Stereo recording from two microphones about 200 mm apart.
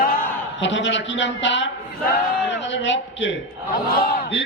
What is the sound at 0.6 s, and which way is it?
A woman's voice, 65° left (ahead or behind).